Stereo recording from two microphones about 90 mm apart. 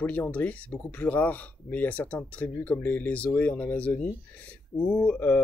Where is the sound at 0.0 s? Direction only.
20° left (ahead or behind).